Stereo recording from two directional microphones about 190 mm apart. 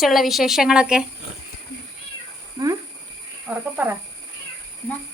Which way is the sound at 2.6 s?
20° right (ahead or behind).